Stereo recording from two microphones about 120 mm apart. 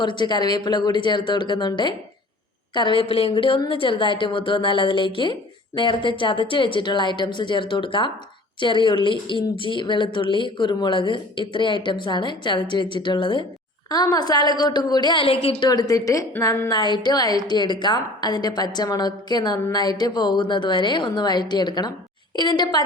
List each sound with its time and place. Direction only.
0.0 s a woman's voice: 40° left (ahead or behind)
13.9 s a woman's voice: 30° left (ahead or behind); by 15.7 s 55° left (ahead or behind)
15.7 s a woman's voice: 30° left (ahead or behind)